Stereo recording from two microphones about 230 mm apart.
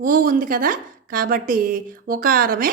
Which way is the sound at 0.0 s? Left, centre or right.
Right.